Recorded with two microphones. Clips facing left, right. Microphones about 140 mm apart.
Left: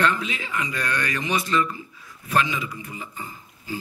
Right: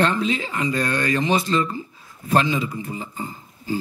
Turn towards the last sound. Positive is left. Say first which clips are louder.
# right 7 dB
turn(degrees=-30)  # may be behind; listen again after turning